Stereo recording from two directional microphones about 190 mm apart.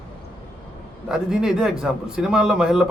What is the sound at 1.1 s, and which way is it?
Speech, 5° right (ahead or behind).